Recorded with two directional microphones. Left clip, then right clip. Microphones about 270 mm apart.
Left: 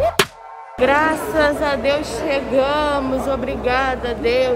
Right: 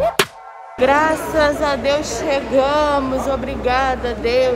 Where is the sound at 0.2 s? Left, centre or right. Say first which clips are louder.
Even; centre.